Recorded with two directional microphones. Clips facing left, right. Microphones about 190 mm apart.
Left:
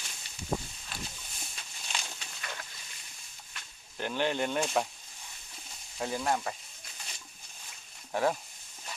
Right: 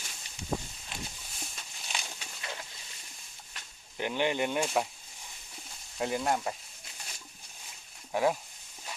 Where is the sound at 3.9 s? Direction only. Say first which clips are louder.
Right 1 dB; 15° right (ahead or behind).